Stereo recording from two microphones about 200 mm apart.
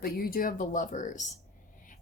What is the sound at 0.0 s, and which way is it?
A woman's voice, 45° left (ahead or behind).